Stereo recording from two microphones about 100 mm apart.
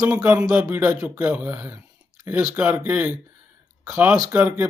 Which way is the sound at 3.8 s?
25° right (ahead or behind).